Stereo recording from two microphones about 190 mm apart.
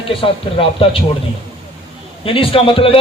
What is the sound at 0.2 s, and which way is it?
Speech, 30° left (ahead or behind).